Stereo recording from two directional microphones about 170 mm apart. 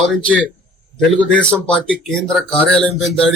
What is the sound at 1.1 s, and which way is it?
A man's voice, 5° left (ahead or behind).